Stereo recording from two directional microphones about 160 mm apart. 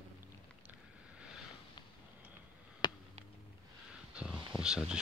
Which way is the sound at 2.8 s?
30° left (ahead or behind).